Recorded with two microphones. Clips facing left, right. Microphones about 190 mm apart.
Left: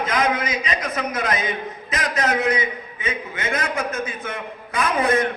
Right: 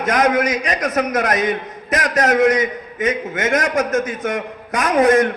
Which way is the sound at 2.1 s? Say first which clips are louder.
Right 5 dB; 45° right (ahead or behind).